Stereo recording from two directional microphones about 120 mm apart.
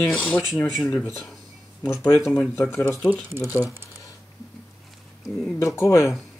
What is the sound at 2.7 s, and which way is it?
Speech, 20° left (ahead or behind).